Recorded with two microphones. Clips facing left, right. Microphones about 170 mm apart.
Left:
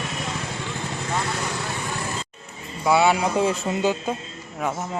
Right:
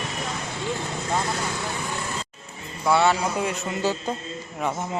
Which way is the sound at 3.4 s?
30° left (ahead or behind).